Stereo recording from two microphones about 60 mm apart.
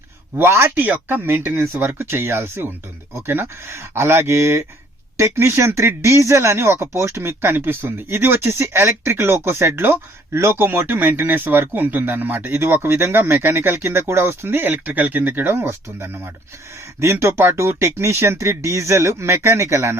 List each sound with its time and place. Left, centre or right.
0.3 s speech: right
0.8 s speech: right
7.5 s speech: right